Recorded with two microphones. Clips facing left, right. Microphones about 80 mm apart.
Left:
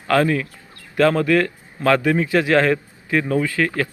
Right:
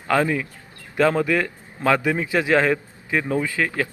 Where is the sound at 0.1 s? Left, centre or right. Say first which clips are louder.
Left 3 dB; centre.